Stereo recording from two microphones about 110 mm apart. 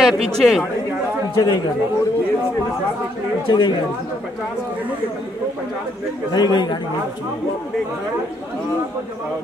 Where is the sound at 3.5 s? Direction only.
45° left (ahead or behind).